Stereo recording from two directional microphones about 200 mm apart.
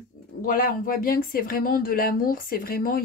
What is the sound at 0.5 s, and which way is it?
Speech, 45° left (ahead or behind).